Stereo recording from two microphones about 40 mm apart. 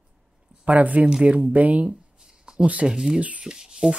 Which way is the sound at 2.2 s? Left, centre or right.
Centre.